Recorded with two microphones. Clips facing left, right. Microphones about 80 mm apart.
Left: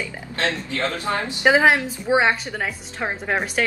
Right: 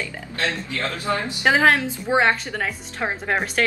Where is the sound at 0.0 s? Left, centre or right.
Left; by 3.6 s centre.